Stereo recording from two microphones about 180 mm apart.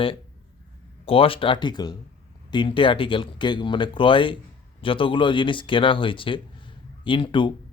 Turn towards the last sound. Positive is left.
turn(degrees=25)  # may be behind; listen again after turning